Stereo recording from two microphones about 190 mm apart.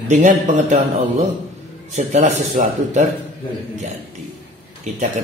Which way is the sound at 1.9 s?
40° right (ahead or behind).